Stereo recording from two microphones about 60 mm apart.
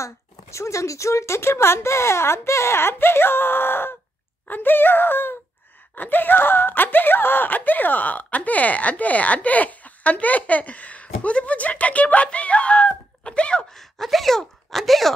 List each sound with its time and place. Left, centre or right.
0.0 s speech: left; by 13.7 s centre
13.7 s speech: centre